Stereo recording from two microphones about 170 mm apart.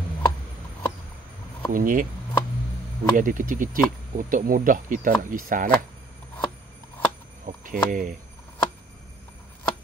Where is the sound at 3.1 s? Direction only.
55° right (ahead or behind).